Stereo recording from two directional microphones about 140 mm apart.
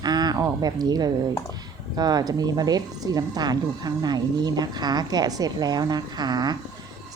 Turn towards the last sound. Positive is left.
turn(degrees=-30)  # may be behind; listen again after turning